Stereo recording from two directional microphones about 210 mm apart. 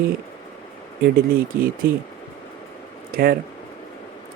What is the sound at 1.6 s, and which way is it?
Speech, 45° right (ahead or behind).